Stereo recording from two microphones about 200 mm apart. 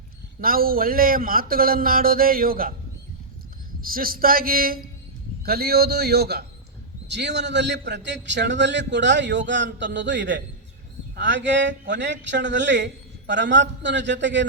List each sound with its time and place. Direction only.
0.4 s speech: 45° right (ahead or behind)
3.8 s a man's voice: 45° right (ahead or behind); by 14.4 s 65° right (ahead or behind)